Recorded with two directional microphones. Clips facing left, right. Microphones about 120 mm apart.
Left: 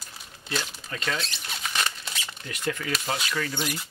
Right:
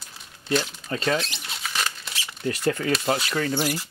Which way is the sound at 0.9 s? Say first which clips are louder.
Right 7 dB; 40° right (ahead or behind).